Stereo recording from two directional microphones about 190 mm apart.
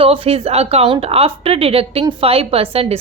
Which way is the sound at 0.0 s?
30° right (ahead or behind).